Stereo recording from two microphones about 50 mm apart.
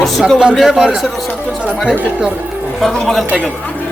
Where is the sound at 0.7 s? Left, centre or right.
Centre.